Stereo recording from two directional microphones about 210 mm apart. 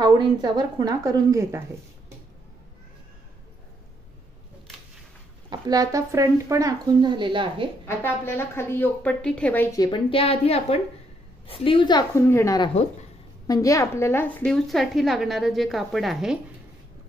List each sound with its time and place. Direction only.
0.0 s speech: 20° right (ahead or behind)
5.5 s speech: 15° right (ahead or behind)
7.8 s a woman's voice: 10° left (ahead or behind)